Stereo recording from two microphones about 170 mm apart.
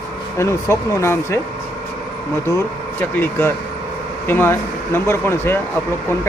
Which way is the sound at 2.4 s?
15° left (ahead or behind).